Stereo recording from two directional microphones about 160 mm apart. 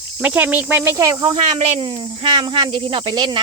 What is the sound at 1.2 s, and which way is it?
Speech, 35° right (ahead or behind).